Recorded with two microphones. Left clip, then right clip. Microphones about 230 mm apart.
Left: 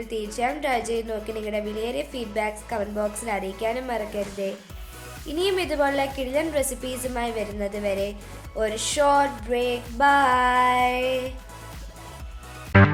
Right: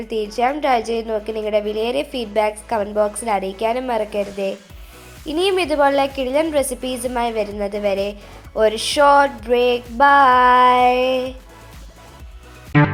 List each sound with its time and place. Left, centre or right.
0.3 s a woman's voice: centre